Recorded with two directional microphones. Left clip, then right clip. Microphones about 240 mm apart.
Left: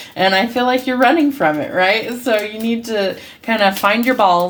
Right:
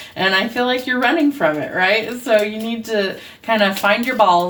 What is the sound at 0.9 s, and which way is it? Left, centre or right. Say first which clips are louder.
Speech: left 1 dB; left.